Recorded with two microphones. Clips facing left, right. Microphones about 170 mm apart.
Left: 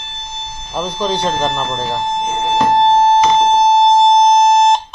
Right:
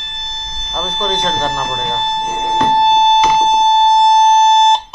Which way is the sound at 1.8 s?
5° left (ahead or behind).